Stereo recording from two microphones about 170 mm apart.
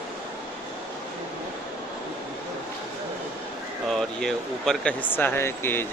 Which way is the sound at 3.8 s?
5° left (ahead or behind).